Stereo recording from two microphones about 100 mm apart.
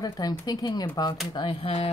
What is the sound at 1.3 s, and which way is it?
Speech, 60° left (ahead or behind).